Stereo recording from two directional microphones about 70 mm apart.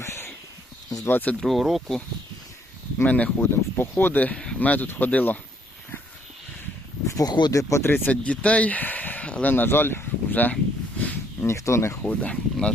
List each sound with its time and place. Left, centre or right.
0.0 s a sound: left
1.0 s speech: left
1.4 s speech: centre
3.0 s speech: centre
3.4 s speech: left
3.9 s speech: left
7.3 s speech: left
7.5 s speech: left
7.9 s speech: left
8.1 s speech: centre
11.4 s speech: left
12.0 s speech: centre